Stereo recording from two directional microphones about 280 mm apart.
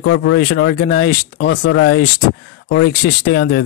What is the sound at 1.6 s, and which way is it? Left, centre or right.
Speech, left.